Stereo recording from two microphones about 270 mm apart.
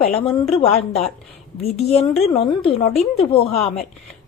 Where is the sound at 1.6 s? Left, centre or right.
Left.